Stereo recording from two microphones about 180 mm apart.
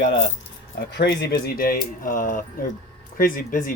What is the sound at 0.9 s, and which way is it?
Speech, 65° left (ahead or behind).